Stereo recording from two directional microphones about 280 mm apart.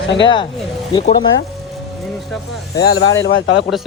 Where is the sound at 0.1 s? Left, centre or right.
Centre.